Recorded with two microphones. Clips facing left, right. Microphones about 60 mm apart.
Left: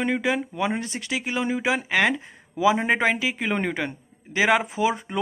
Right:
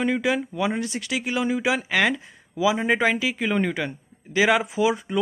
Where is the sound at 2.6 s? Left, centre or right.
Left.